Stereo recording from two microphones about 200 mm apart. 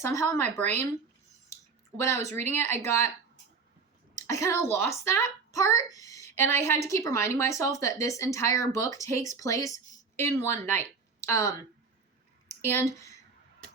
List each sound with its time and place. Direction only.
0.0 s speech: 15° left (ahead or behind)
2.0 s speech: 15° left (ahead or behind)
4.1 s speech: 15° left (ahead or behind)
12.6 s speech: 15° left (ahead or behind)